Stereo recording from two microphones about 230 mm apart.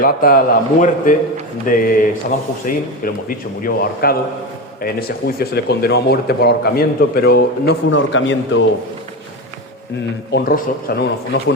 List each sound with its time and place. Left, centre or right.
0.0 s speech: left
10.3 s speech: left